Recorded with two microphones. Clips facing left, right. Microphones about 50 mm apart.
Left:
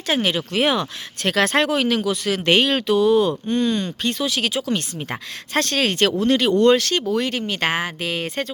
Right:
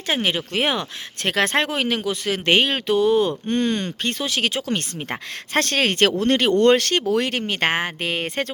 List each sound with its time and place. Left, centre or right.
0.1 s speech: right
2.9 s speech: right